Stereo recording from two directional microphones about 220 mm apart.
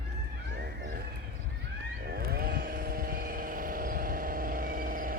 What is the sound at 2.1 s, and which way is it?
Vehicle, 45° right (ahead or behind).